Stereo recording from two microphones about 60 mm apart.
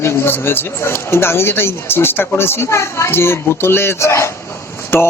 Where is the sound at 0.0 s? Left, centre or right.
Left.